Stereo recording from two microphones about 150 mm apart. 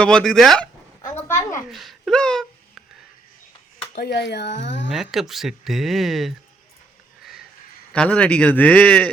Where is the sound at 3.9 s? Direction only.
90° left.